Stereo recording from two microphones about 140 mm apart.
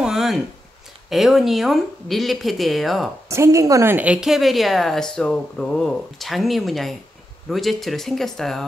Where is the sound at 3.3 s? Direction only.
20° right (ahead or behind).